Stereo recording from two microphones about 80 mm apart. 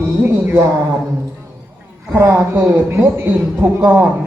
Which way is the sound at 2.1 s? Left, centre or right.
Right.